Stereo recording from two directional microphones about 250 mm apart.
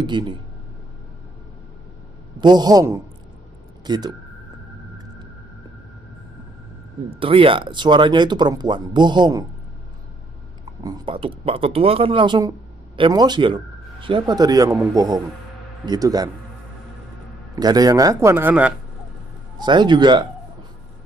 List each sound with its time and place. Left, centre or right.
0.0 s speech: centre
2.4 s speech: centre
7.2 s speech: right
10.6 s speech: centre
17.6 s speech: centre
19.6 s speech: centre